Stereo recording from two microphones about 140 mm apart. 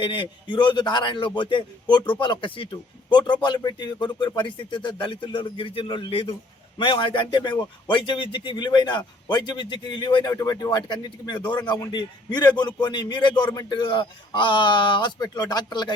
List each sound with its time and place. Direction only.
0.0 s a man's voice: 35° left (ahead or behind)